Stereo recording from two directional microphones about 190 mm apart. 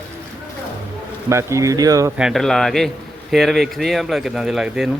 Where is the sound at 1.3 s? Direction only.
15° right (ahead or behind).